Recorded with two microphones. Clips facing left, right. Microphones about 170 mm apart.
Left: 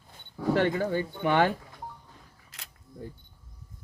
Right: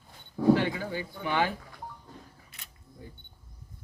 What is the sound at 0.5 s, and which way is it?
Speech, 50° left (ahead or behind).